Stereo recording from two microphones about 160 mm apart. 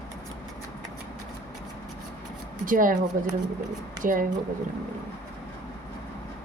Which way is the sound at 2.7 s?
55° right (ahead or behind).